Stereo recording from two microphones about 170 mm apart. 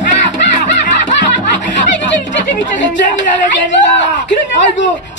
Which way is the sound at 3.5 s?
90° left.